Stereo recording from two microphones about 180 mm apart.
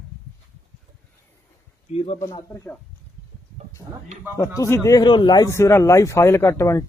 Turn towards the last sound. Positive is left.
turn(degrees=15)  # may be behind; listen again after turning